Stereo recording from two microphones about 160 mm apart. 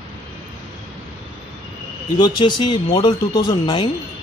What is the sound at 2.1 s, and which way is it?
A man's voice, 30° left (ahead or behind).